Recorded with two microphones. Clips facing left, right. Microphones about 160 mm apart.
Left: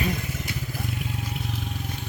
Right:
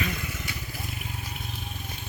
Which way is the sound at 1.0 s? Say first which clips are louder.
Left 6 dB; 90° left.